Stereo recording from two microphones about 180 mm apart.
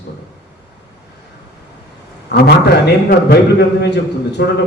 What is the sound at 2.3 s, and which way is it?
A man's voice, 65° left (ahead or behind).